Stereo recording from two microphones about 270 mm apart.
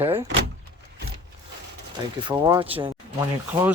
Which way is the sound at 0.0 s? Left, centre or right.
Centre.